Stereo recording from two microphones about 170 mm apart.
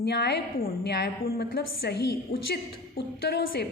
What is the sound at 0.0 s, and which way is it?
A woman's voice, 80° left.